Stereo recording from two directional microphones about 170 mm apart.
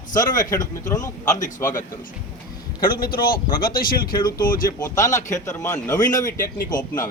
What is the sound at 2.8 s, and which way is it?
A man's voice, 60° left (ahead or behind).